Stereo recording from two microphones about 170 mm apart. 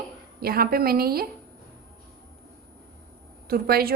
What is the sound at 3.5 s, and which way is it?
Speech, 65° right (ahead or behind).